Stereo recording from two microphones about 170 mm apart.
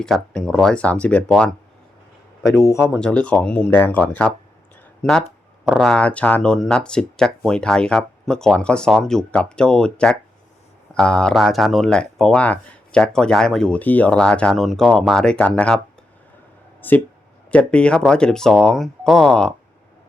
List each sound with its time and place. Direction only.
0.0 s speech: 5° left (ahead or behind)
2.4 s speech: 20° left (ahead or behind)
2.8 s speech: centre (ahead or behind)
16.8 s speech: 10° left (ahead or behind)